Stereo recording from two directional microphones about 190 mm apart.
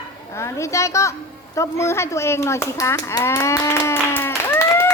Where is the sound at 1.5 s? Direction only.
15° left (ahead or behind).